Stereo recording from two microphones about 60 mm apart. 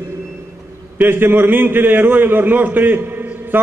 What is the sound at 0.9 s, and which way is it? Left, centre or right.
A man's voice, right.